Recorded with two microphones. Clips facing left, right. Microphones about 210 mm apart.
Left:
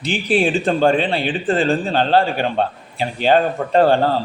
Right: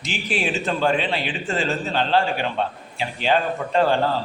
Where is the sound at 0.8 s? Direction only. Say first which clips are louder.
Left 4 dB; 35° left (ahead or behind).